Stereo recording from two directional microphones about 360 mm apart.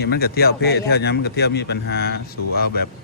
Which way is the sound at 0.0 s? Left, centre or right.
Left.